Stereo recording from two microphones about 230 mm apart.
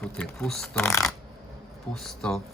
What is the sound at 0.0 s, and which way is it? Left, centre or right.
Speech, centre.